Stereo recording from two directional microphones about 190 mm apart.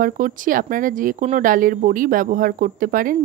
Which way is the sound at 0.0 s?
45° right (ahead or behind).